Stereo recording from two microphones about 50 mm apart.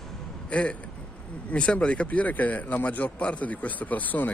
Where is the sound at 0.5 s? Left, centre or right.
Left.